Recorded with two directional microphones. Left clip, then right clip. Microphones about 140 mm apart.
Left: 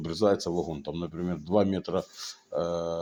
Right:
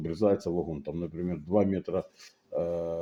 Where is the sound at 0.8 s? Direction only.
15° right (ahead or behind).